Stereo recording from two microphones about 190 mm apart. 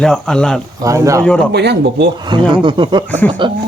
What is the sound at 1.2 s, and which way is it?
Speech, 5° left (ahead or behind).